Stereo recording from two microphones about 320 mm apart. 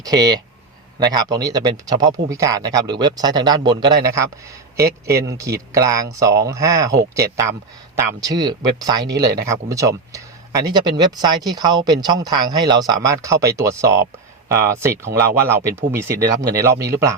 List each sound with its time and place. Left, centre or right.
0.0 s a man's voice: centre
8.2 s a man's voice: centre
9.1 s speech: right
9.5 s a man's voice: centre